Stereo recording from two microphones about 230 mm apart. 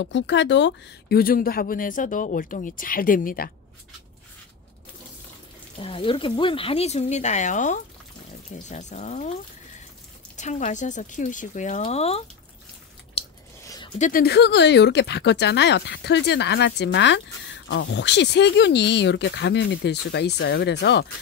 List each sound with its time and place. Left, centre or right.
0.0 s speech: left
5.8 s speech: left
10.3 s speech: left
13.2 s biting: left
13.7 s a sound: centre
13.9 s speech: left